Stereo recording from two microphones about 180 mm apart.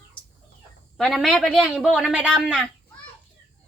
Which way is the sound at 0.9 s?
Centre (ahead or behind).